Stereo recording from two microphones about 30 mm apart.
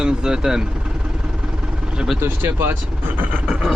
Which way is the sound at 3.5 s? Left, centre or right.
Centre.